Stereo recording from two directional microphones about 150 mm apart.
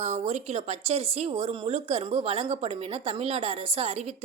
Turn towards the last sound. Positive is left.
turn(degrees=-45)  # may be behind; listen again after turning